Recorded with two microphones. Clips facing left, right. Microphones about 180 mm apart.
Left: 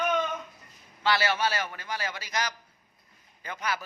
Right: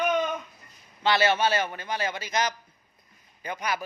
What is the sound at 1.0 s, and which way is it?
A man's voice, 20° right (ahead or behind).